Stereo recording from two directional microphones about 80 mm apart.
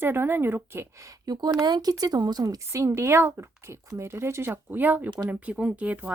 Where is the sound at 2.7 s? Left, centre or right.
Right.